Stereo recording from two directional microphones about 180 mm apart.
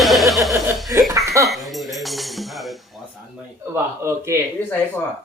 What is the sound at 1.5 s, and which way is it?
Music, centre (ahead or behind).